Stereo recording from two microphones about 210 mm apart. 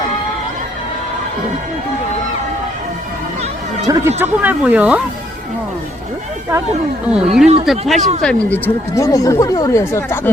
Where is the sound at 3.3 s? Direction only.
30° right (ahead or behind).